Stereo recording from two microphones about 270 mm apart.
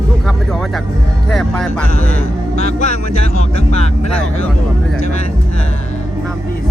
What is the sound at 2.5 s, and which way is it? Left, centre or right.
Speech, left.